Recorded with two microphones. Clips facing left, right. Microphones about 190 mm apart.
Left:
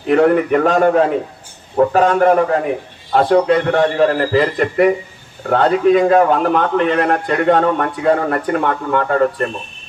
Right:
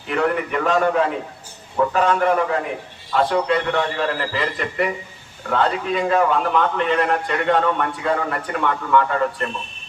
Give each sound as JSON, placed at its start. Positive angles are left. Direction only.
{"t": 0.1, "sound": "a man's voice", "side_deg": 45}